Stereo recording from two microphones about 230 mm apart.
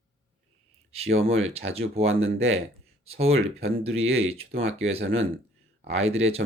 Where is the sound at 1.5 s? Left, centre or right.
Right.